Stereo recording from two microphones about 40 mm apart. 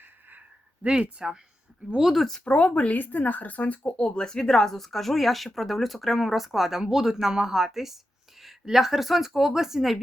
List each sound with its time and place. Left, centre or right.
0.0 s a sound: right
1.2 s speech: centre
2.4 s speech: left
2.9 s speech: left
3.8 s speech: left
4.2 s speech: centre